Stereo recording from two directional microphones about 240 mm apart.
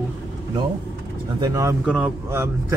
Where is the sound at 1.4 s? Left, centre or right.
Centre.